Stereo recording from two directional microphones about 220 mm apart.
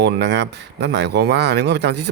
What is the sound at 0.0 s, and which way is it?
Speech, 50° right (ahead or behind).